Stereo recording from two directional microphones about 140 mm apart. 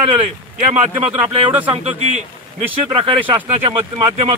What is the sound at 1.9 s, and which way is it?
Speech, 50° right (ahead or behind).